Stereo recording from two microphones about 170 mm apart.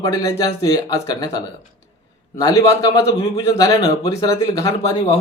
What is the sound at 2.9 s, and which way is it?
Speech, 20° left (ahead or behind).